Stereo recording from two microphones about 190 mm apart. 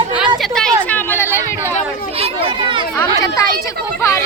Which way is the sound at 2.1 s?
30° right (ahead or behind).